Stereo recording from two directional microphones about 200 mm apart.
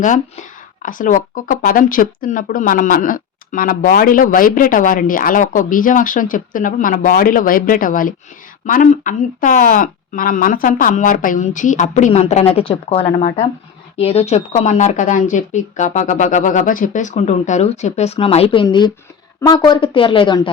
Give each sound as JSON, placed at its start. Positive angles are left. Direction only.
{"t": 0.8, "sound": "speech", "side_deg": 40}